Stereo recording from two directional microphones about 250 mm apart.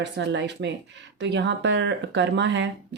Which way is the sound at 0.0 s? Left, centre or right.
Right.